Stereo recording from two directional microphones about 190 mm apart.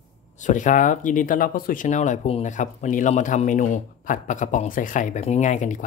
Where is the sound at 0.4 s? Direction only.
40° left (ahead or behind).